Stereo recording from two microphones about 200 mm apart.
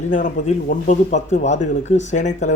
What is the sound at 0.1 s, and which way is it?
Speech, 40° left (ahead or behind).